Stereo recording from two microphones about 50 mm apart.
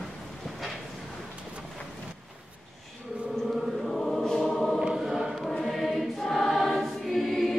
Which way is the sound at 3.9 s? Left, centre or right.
Centre.